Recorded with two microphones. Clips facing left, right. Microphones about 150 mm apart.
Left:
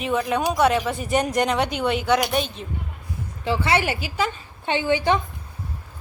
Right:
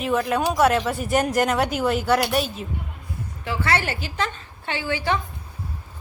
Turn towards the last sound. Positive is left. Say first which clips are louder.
# left 4 dB
turn(degrees=20)  # may be behind; listen again after turning